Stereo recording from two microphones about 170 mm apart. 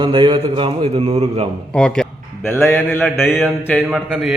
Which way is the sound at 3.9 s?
5° right (ahead or behind).